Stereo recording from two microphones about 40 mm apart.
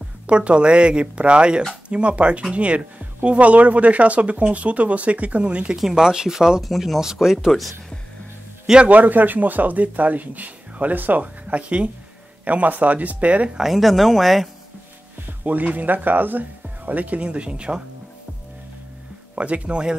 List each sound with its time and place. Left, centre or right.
0.3 s speech: right
5.8 s speech: centre
6.6 s speech: centre
7.0 s speech: centre
8.8 s speech: right
13.6 s speech: centre
15.4 s speech: right
19.3 s speech: right